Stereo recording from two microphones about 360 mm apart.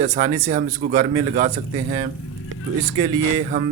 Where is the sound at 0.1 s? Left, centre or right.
Centre.